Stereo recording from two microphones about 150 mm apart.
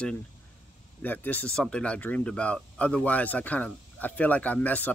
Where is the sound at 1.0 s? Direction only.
10° left (ahead or behind).